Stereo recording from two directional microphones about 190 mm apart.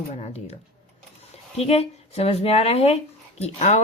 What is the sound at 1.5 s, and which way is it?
Speech, 35° left (ahead or behind).